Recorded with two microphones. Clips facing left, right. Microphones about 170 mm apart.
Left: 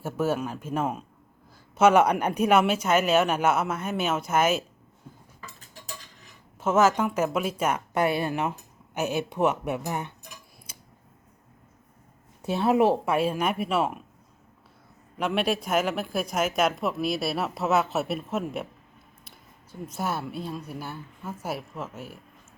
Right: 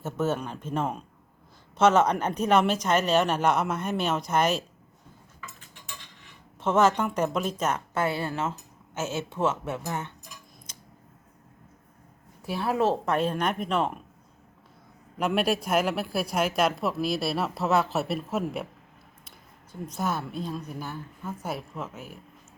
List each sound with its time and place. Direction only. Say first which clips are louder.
0.0 s speech: left 1 dB; 10° left (ahead or behind)
5.4 s cutlery: even; 40° left (ahead or behind)
6.6 s speech: left 1 dB; 5° left (ahead or behind)
10.7 s a sound: left 3 dB; 10° left (ahead or behind)
12.5 s speech: left 4 dB; 20° left (ahead or behind); by 14.0 s 5° left (ahead or behind)
15.2 s speech: right 1 dB; centre (ahead or behind)
19.8 s speech: even; 5° left (ahead or behind)